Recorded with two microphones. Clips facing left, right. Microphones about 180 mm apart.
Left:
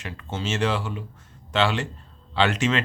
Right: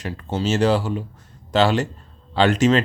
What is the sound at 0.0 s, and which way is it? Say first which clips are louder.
Speech: right 7 dB; 35° right (ahead or behind).